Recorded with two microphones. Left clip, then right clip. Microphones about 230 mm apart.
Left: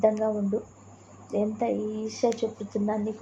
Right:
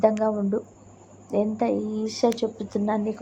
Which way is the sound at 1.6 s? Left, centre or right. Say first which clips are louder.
Right 3 dB; right.